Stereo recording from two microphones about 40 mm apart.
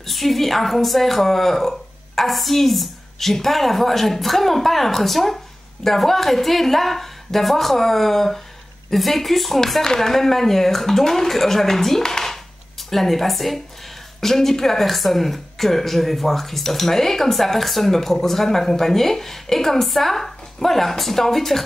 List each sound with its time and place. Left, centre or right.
0.0 s speech: centre